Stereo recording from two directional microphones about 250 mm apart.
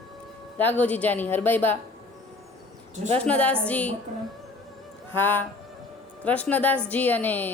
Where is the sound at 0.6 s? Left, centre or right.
Centre.